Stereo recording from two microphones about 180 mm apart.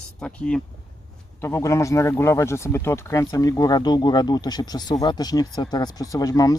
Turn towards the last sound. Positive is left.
turn(degrees=20)  # may be behind; listen again after turning